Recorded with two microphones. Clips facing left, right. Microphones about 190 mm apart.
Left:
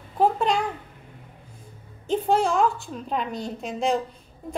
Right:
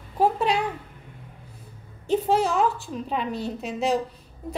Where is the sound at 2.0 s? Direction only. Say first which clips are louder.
Even; 5° right (ahead or behind).